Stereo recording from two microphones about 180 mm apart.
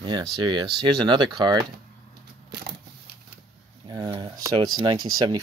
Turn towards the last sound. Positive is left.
turn(degrees=-20)  # may be behind; listen again after turning